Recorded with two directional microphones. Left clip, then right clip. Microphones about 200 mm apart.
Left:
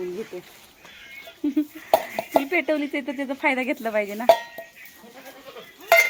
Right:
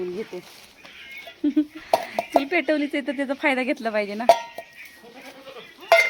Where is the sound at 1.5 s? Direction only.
25° right (ahead or behind).